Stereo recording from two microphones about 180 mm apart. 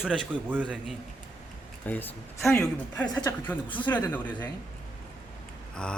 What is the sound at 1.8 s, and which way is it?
A man's voice, 10° left (ahead or behind).